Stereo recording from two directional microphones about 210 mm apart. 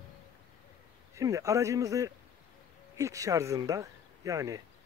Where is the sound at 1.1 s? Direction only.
15° right (ahead or behind).